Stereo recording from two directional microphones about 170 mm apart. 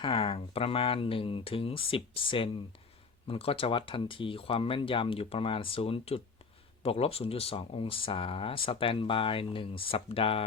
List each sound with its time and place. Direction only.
0.0 s speech: 30° left (ahead or behind)